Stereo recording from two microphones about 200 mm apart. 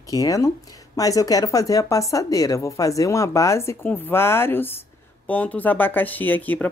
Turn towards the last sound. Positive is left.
turn(degrees=10)  # may be behind; listen again after turning